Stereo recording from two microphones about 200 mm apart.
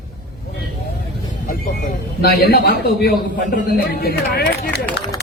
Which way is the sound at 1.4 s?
50° left (ahead or behind).